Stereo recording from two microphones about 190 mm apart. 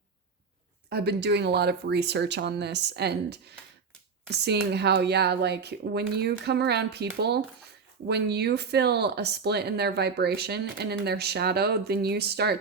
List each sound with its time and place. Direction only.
0.9 s speech: 60° right (ahead or behind)